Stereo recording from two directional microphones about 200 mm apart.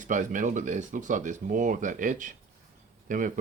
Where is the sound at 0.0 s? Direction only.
40° right (ahead or behind).